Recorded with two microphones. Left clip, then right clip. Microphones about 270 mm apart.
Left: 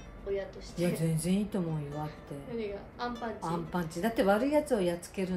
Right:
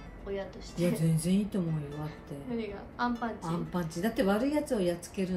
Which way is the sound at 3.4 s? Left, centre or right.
Left.